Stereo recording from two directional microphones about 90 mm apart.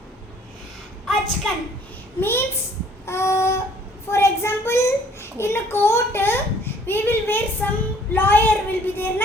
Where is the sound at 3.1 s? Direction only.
30° left (ahead or behind).